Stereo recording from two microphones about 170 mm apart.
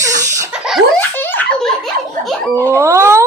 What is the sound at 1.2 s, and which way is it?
Speech, 10° left (ahead or behind).